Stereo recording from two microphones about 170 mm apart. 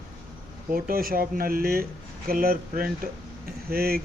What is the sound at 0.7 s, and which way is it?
Speech, 60° right (ahead or behind).